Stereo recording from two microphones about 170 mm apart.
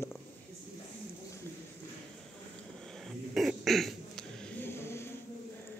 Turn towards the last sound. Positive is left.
turn(degrees=15)  # may be behind; listen again after turning